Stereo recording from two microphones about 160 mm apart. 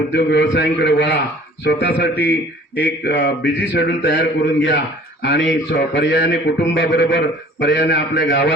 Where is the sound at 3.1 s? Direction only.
90° left.